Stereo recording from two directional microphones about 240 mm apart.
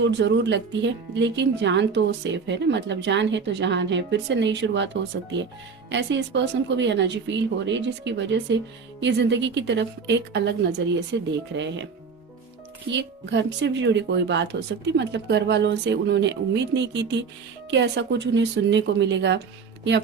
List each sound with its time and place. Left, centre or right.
0.0 s speech: right
5.9 s speech: right
12.9 s speech: right